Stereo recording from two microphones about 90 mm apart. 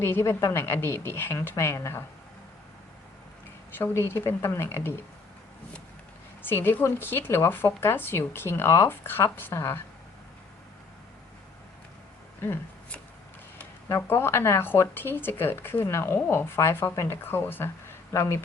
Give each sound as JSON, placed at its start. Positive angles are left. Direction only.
{"t": 0.0, "sound": "speech", "side_deg": 30}
{"t": 3.8, "sound": "speech", "side_deg": 25}
{"t": 6.4, "sound": "speech", "side_deg": 25}
{"t": 13.8, "sound": "speech", "side_deg": 30}